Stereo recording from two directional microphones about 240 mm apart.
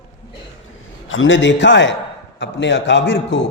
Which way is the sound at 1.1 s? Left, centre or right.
Left.